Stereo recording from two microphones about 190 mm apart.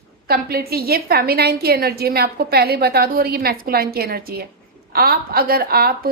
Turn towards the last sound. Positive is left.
turn(degrees=-55)  # may be behind; listen again after turning